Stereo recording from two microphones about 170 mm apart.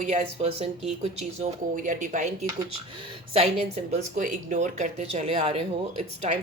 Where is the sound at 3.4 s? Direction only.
40° right (ahead or behind).